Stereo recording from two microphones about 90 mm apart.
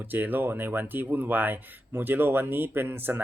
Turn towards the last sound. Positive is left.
turn(degrees=-20)  # may be behind; listen again after turning